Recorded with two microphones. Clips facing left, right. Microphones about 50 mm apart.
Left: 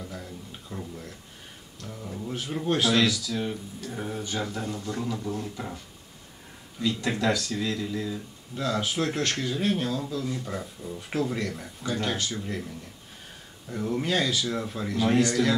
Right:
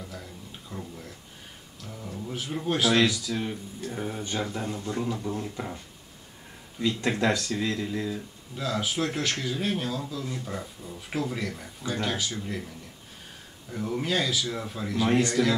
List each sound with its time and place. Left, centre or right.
0.0 s a sound: centre
2.6 s speech: centre
3.3 s speech: centre
3.9 s speech: centre
4.4 s speech: centre
7.1 s speech: right
8.5 s speech: centre
13.7 s speech: centre
15.0 s speech: centre